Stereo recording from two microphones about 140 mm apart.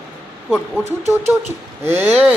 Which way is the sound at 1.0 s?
20° right (ahead or behind).